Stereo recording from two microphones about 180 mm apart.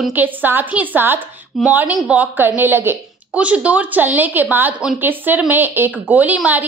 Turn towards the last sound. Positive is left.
turn(degrees=-10)  # may be behind; listen again after turning